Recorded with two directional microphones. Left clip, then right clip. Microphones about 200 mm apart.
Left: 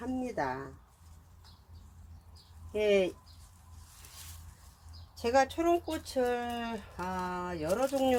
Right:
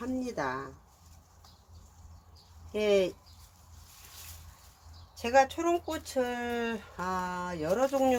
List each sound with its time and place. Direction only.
0.0 s a sound: 20° right (ahead or behind)
2.7 s speech: 20° right (ahead or behind)
5.2 s speech: 5° left (ahead or behind); by 8.1 s 15° right (ahead or behind)